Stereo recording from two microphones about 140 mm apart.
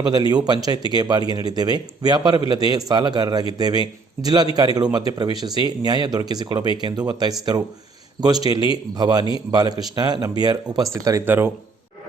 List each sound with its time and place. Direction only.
0.1 s speech: 30° right (ahead or behind)
11.0 s speech: 20° right (ahead or behind)